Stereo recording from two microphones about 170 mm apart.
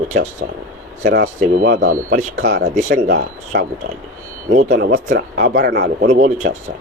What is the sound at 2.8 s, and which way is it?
Speech, 45° right (ahead or behind).